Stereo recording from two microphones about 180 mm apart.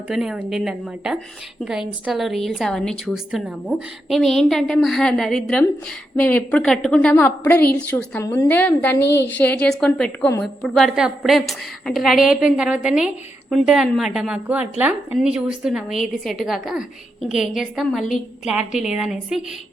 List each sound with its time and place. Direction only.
0.1 s a woman's voice: 5° right (ahead or behind)